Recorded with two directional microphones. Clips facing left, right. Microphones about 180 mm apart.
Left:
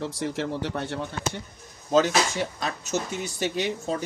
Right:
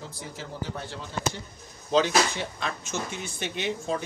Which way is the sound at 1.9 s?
45° left (ahead or behind).